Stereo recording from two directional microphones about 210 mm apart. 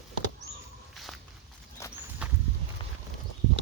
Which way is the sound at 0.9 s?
Centre (ahead or behind).